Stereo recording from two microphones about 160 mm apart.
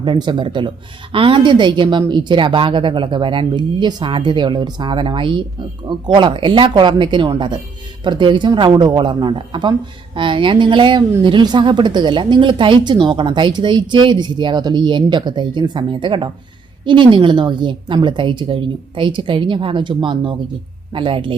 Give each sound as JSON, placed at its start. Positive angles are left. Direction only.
{"t": 0.0, "sound": "a man's voice", "side_deg": -30}